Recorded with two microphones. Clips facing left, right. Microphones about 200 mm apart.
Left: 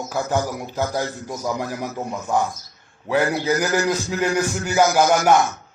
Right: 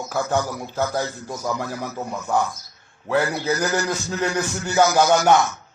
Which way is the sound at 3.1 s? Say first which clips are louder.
Left 2 dB; 15° left (ahead or behind).